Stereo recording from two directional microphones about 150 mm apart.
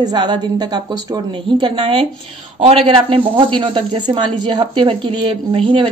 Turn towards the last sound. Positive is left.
turn(degrees=-35)  # may be behind; listen again after turning